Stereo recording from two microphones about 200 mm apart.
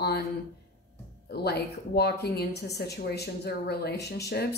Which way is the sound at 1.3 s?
55° left (ahead or behind).